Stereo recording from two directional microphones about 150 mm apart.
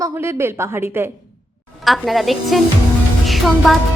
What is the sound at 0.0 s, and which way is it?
Speech, 20° right (ahead or behind).